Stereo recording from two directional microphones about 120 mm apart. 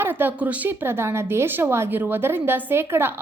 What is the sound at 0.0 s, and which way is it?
A woman's voice, 15° right (ahead or behind).